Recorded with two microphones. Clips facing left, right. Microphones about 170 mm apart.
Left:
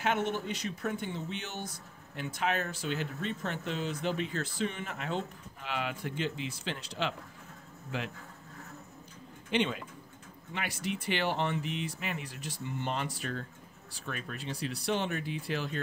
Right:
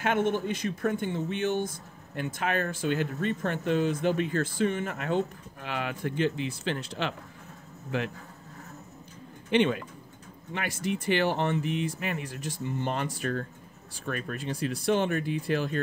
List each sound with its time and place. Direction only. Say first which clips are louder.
0.0 s speech: right 5 dB; 50° right (ahead or behind)
9.5 s speech: right 6 dB; 60° right (ahead or behind)
10.5 s speech: right 5 dB; 45° right (ahead or behind)